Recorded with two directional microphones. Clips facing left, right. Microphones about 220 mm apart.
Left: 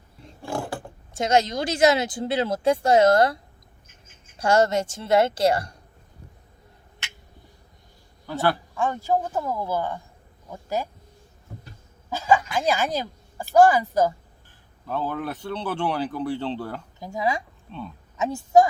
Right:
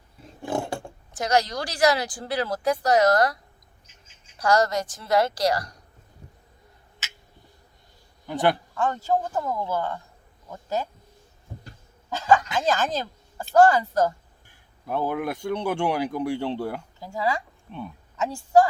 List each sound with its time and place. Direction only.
0.4 s roaring cats: 25° right (ahead or behind)
1.1 s speech: 25° left (ahead or behind)
3.8 s bird: 55° left (ahead or behind)
4.4 s speech: 25° left (ahead or behind)
8.3 s speech: 20° right (ahead or behind)
8.7 s speech: 10° left (ahead or behind)
12.1 s a sound: 10° left (ahead or behind)
12.5 s speech: 10° left (ahead or behind)
14.8 s speech: 15° right (ahead or behind)
17.0 s speech: 20° left (ahead or behind)
17.7 s speech: 15° right (ahead or behind)
18.2 s speech: 20° left (ahead or behind)